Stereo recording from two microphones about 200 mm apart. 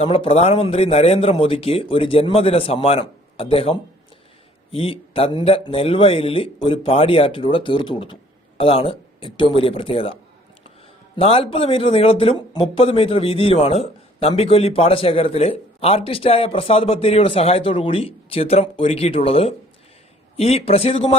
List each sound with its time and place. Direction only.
0.0 s speech: 30° left (ahead or behind)
11.2 s a man's voice: 30° left (ahead or behind)